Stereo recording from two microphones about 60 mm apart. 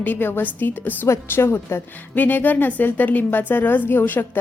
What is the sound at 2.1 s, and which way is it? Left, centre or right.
A woman's voice, left.